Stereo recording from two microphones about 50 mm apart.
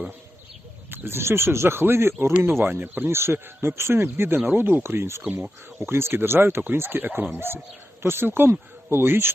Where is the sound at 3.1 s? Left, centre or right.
Right.